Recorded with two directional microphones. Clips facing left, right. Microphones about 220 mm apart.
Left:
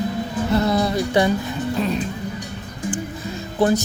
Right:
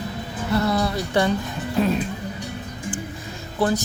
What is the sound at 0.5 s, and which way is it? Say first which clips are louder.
Speech: left 2 dB; 20° left (ahead or behind).